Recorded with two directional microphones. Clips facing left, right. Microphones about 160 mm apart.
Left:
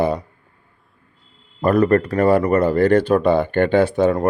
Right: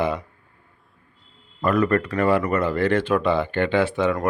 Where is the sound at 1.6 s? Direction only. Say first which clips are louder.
Left 5 dB; 40° left (ahead or behind).